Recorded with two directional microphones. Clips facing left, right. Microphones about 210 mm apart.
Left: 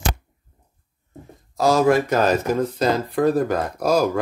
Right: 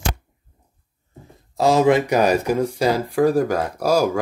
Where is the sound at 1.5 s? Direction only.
25° right (ahead or behind).